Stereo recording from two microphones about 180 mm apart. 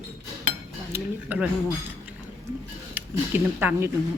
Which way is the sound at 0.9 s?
10° right (ahead or behind).